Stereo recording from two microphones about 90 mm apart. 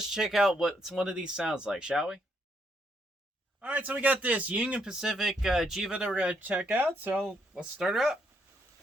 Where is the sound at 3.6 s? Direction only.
20° right (ahead or behind).